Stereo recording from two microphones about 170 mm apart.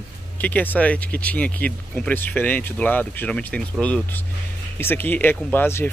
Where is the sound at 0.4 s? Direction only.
10° left (ahead or behind).